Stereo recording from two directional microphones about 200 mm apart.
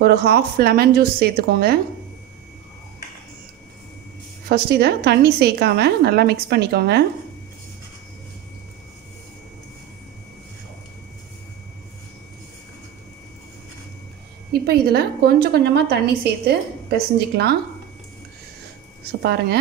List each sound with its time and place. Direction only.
0.0 s a woman's voice: 55° right (ahead or behind)
4.5 s a woman's voice: 55° right (ahead or behind)
14.5 s a woman's voice: 50° right (ahead or behind)